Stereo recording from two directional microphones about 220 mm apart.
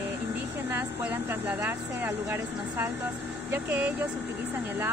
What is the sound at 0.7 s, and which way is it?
Speech, 10° right (ahead or behind).